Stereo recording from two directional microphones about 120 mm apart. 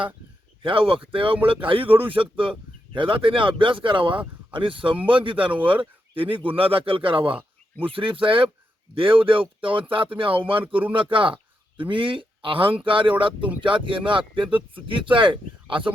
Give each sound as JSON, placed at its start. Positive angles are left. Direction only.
{"t": 0.6, "sound": "speech", "side_deg": -50}